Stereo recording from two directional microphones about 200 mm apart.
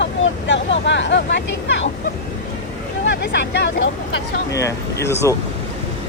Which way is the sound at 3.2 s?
60° left (ahead or behind).